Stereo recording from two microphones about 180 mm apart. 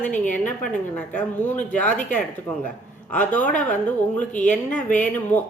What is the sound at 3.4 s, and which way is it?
Speech, 45° left (ahead or behind).